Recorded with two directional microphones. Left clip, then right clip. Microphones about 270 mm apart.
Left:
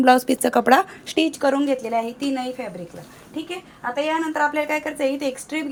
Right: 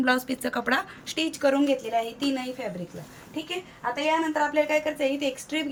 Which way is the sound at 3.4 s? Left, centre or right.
Centre.